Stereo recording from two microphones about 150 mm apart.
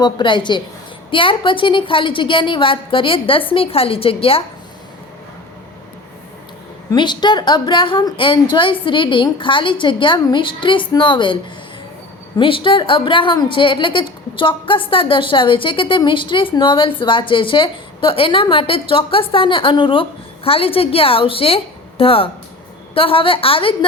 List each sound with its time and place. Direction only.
0.0 s a woman's voice: 30° left (ahead or behind)
6.9 s a woman's voice: 30° left (ahead or behind)
12.4 s a woman's voice: 35° left (ahead or behind)